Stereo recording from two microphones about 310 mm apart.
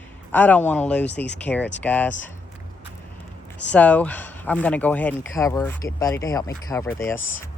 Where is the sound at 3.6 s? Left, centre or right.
Centre.